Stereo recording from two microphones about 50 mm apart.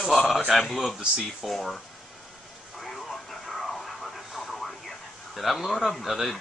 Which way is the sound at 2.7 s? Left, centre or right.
Centre.